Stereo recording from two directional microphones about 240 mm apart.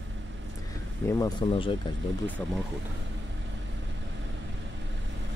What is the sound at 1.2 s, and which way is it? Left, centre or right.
Speech, left.